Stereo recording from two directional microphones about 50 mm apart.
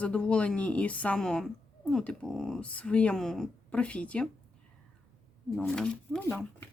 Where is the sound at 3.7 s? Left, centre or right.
Left.